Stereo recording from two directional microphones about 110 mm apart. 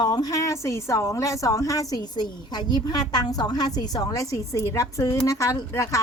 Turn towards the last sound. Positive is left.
turn(degrees=30)  # may be behind; listen again after turning